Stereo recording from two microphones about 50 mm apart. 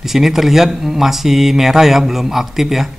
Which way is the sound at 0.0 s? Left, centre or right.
Centre.